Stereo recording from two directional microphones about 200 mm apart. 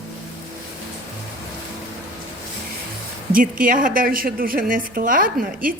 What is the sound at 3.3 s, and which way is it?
A woman's voice, 45° right (ahead or behind).